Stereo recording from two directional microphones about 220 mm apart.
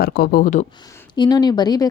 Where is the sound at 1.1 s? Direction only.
20° left (ahead or behind).